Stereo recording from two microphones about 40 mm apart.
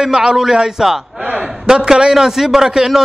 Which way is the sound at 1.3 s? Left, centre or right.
Right.